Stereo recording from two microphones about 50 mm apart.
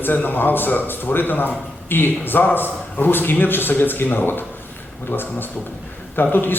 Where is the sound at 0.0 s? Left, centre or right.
Left.